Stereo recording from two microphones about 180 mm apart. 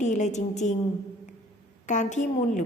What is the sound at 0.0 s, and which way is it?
Speech, 40° left (ahead or behind).